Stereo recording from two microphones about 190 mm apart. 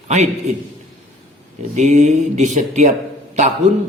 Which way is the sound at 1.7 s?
40° right (ahead or behind).